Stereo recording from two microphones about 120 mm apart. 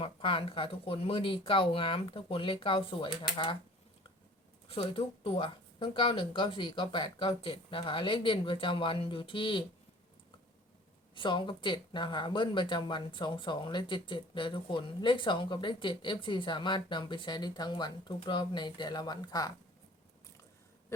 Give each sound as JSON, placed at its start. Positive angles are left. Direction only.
{"t": 0.0, "sound": "speech", "side_deg": 45}
{"t": 4.7, "sound": "speech", "side_deg": 50}
{"t": 11.1, "sound": "speech", "side_deg": 40}